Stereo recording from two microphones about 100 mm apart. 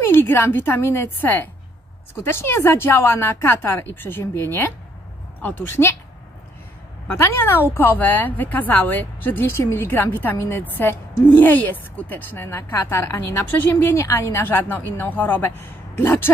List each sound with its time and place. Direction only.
0.0 s a woman's voice: 25° left (ahead or behind)
7.1 s a woman's voice: 20° left (ahead or behind)